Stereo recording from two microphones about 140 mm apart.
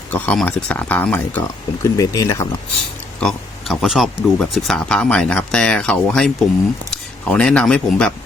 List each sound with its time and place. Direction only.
0.1 s speech: 10° left (ahead or behind)
1.4 s speech: 25° left (ahead or behind)
3.2 s speech: centre (ahead or behind)